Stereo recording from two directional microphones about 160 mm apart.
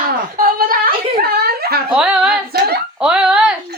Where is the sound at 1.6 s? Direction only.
75° right (ahead or behind).